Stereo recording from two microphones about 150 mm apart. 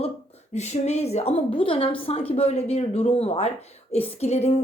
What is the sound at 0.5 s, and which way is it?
Speech, 50° left (ahead or behind).